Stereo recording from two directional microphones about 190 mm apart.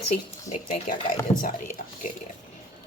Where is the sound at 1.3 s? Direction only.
20° left (ahead or behind).